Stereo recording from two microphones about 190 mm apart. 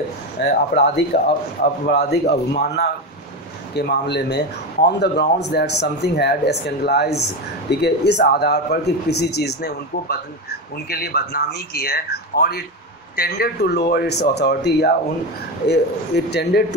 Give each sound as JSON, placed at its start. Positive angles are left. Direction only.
{"t": 0.4, "sound": "speech", "side_deg": 60}
{"t": 16.3, "sound": "speech", "side_deg": 60}